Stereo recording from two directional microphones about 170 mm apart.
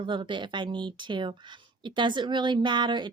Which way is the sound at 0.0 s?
30° right (ahead or behind).